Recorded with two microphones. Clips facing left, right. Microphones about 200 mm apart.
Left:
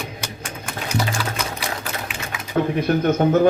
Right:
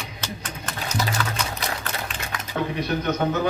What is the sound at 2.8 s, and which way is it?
Speech, 50° left (ahead or behind).